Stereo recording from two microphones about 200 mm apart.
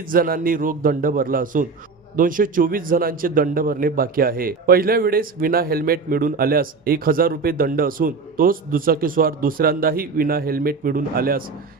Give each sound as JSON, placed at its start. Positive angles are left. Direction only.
{"t": 0.0, "sound": "a man's voice", "side_deg": -45}